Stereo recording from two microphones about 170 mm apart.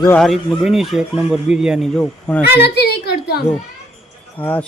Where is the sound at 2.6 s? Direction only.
70° left (ahead or behind).